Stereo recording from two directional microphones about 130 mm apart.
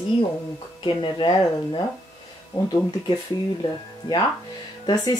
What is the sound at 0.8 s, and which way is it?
Speech, 35° left (ahead or behind).